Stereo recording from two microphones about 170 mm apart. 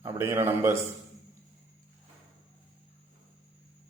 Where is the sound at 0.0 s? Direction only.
15° right (ahead or behind).